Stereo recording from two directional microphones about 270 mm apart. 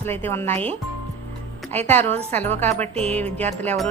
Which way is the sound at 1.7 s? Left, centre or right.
Centre.